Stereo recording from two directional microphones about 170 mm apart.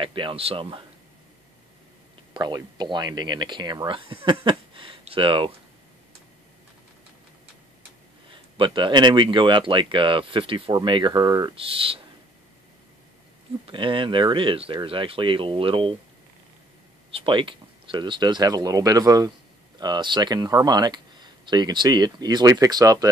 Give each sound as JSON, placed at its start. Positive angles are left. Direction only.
{"t": 0.0, "sound": "speech", "side_deg": -30}
{"t": 2.3, "sound": "speech", "side_deg": -25}
{"t": 8.3, "sound": "speech", "side_deg": -30}
{"t": 13.7, "sound": "speech", "side_deg": -30}
{"t": 17.1, "sound": "speech", "side_deg": -30}